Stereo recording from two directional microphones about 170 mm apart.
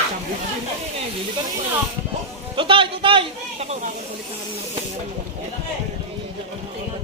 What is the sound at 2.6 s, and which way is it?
A man's voice, 30° right (ahead or behind).